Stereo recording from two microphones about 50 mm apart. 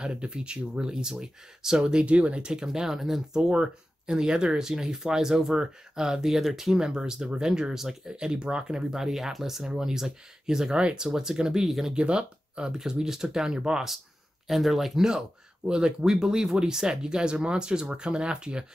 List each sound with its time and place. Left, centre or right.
0.0 s speech: centre
2.0 s speech: right; by 11.9 s centre
11.9 s speech: centre
14.5 s speech: centre
15.0 s speech: centre